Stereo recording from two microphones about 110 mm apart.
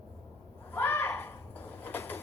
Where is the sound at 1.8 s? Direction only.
20° left (ahead or behind).